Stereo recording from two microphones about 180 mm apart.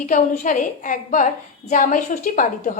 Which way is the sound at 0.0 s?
45° left (ahead or behind).